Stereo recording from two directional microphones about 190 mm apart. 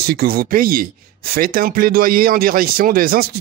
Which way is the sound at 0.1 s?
50° right (ahead or behind).